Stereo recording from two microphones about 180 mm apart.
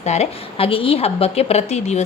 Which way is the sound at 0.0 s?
40° left (ahead or behind).